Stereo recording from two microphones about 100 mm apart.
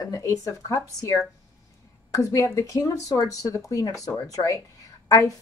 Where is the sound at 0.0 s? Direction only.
35° left (ahead or behind).